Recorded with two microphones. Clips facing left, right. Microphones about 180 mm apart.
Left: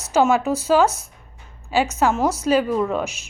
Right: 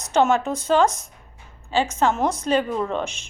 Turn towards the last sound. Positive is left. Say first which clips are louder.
# left 3 dB
turn(degrees=5)  # may be behind; listen again after turning